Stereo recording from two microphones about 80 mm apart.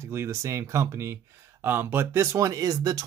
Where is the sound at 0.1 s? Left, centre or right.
Right.